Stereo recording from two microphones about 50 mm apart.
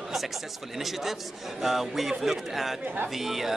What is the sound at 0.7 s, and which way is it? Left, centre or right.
A man's voice, centre.